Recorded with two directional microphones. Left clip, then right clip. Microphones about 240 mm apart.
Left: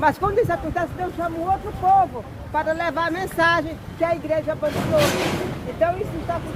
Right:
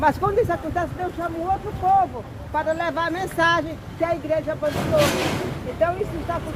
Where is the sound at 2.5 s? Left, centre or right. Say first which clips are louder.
Left 1 dB; centre.